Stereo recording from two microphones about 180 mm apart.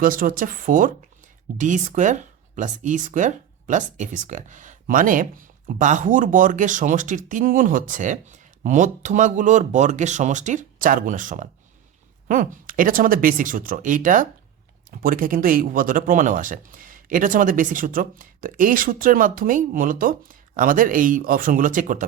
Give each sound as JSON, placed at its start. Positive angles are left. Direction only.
{"t": 0.0, "sound": "speech", "side_deg": -50}